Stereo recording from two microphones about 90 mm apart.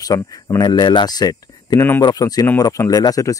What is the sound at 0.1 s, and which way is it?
Speech, 40° left (ahead or behind).